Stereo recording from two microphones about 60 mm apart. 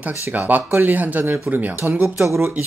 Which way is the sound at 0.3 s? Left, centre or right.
Right.